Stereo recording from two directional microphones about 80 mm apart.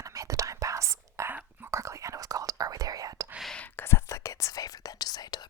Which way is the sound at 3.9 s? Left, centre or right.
Left.